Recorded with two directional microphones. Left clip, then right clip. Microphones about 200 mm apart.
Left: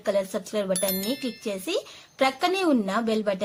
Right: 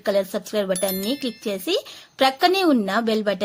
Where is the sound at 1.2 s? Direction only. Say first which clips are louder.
Right 4 dB; 25° right (ahead or behind).